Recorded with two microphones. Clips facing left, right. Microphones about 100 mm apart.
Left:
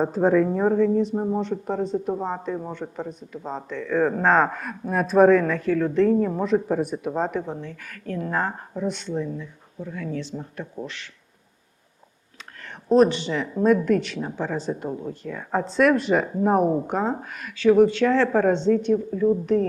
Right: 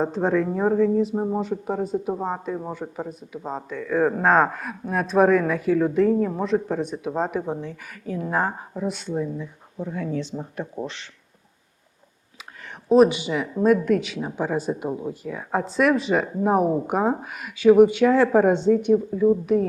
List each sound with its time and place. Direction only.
0.0 s speech: 5° left (ahead or behind)
9.7 s speech: 25° right (ahead or behind)
12.9 s speech: 10° right (ahead or behind)